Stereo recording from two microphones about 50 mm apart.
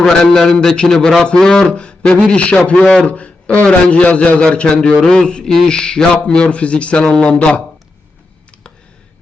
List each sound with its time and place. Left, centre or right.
0.0 s a man's voice: centre
3.1 s a man's voice: left